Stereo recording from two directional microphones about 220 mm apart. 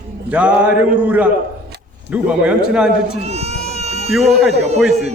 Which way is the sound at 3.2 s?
30° right (ahead or behind).